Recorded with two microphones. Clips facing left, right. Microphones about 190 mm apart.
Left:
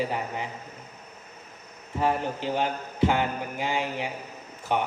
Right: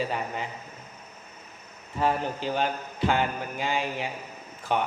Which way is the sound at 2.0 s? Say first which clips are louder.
Even; 20° left (ahead or behind).